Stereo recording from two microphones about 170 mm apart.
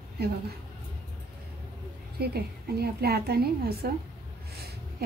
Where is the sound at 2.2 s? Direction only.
65° right (ahead or behind).